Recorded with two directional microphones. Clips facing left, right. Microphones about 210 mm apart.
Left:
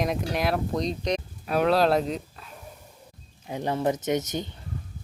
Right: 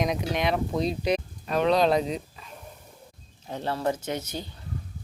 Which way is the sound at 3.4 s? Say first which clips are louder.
Left 2 dB; 15° left (ahead or behind).